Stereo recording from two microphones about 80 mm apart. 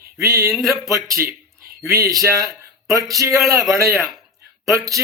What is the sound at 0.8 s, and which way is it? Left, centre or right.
A man's voice, right.